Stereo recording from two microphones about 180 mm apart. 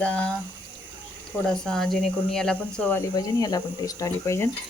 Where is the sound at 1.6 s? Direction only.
5° left (ahead or behind).